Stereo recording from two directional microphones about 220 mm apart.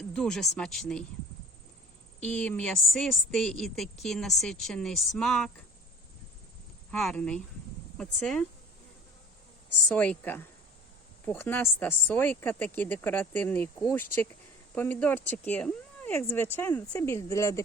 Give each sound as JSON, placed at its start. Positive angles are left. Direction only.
{"t": 0.0, "sound": "speech", "side_deg": 5}
{"t": 2.2, "sound": "speech", "side_deg": 5}
{"t": 6.9, "sound": "speech", "side_deg": 5}
{"t": 9.9, "sound": "speech", "side_deg": 5}